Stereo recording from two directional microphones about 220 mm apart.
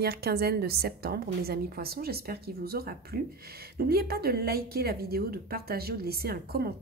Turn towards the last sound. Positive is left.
turn(degrees=-45)  # may be behind; listen again after turning